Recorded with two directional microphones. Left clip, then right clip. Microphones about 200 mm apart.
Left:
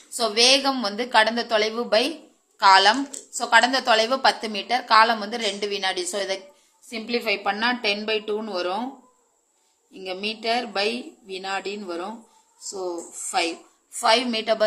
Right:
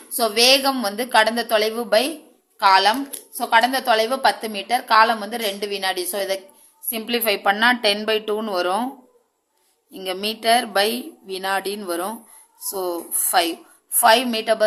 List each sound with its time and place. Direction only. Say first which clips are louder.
0.1 s a woman's voice: right 2 dB; 15° right (ahead or behind)
2.6 s a woman's voice: even; centre (ahead or behind)
6.8 s a woman's voice: right 3 dB; 25° right (ahead or behind)
9.9 s a woman's voice: right 4 dB; 35° right (ahead or behind); by 14.6 s 15° right (ahead or behind)